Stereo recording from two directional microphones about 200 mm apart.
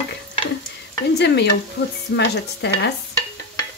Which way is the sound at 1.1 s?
55° left (ahead or behind).